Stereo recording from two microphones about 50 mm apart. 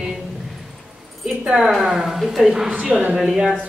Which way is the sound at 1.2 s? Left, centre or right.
Centre.